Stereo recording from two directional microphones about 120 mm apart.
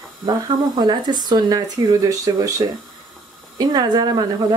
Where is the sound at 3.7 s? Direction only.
35° right (ahead or behind).